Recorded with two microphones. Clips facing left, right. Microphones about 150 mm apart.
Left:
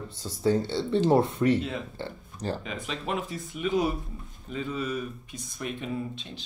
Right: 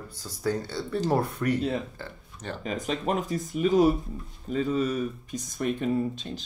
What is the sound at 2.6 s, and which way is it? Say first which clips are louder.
Speech: right 5 dB; 40° right (ahead or behind).